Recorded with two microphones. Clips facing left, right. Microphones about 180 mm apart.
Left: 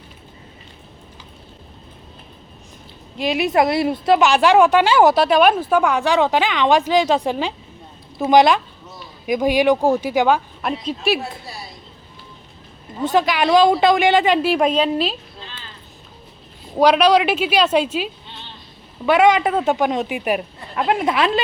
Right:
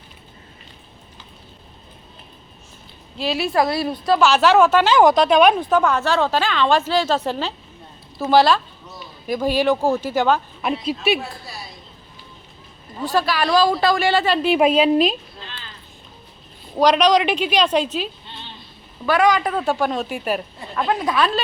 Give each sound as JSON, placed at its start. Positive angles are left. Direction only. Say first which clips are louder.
{"t": 3.2, "sound": "speech", "louder": "left 2 dB", "side_deg": 15}
{"t": 4.3, "sound": "speech", "louder": "right 1 dB", "side_deg": 15}
{"t": 10.6, "sound": "speech", "louder": "right 1 dB", "side_deg": 0}
{"t": 13.0, "sound": "speech", "louder": "left 3 dB", "side_deg": 20}
{"t": 14.4, "sound": "a woman's voice", "louder": "right 2 dB", "side_deg": -5}
{"t": 16.7, "sound": "speech", "louder": "left 2 dB", "side_deg": 10}
{"t": 19.0, "sound": "speech", "louder": "left 3 dB", "side_deg": 25}